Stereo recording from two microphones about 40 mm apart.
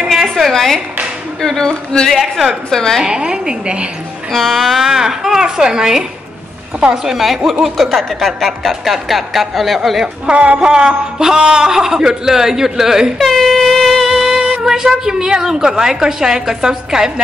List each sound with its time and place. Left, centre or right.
0.1 s a sound: centre
1.4 s speech: centre
2.0 s speech: centre
2.7 s speech: centre
3.1 s a woman's voice: right
4.3 s speech: centre
4.8 s a woman's voice: centre
7.1 s speech: centre
10.2 s speech: right
10.6 s a woman's voice: centre
13.2 s a sound: centre
14.5 s a woman's voice: centre